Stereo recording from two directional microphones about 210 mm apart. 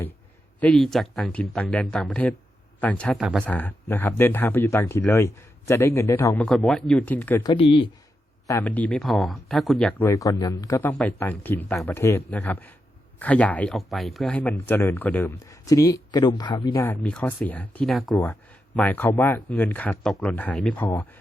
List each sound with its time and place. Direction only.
0.6 s speech: 5° left (ahead or behind)
7.5 s speech: 25° left (ahead or behind)
8.4 s speech: 10° left (ahead or behind)